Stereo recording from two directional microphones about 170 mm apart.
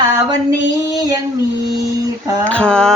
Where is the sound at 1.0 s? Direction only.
20° right (ahead or behind).